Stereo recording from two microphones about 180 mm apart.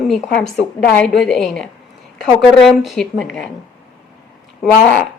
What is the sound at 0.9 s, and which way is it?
A woman's voice, 5° left (ahead or behind).